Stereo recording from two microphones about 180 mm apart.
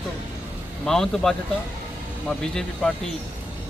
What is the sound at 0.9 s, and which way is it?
Speech, centre (ahead or behind).